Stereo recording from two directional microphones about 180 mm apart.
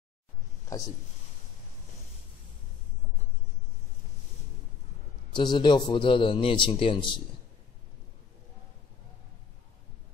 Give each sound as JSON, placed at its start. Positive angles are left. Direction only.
{"t": 5.3, "sound": "speech", "side_deg": 25}